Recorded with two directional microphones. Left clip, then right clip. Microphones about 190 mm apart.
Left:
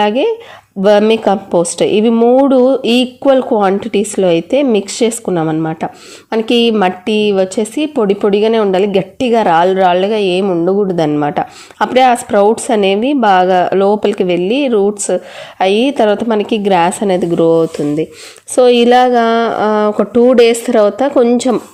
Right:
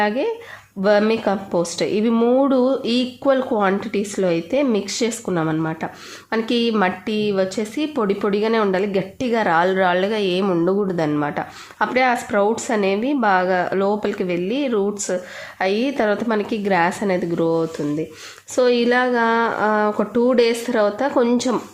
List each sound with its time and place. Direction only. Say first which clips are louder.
0.0 s speech: left 8 dB; 30° left (ahead or behind)
2.1 s a woman's voice: left 7 dB; 20° left (ahead or behind)